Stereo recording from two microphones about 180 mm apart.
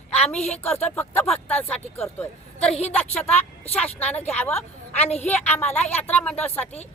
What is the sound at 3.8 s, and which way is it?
Speech, 10° left (ahead or behind).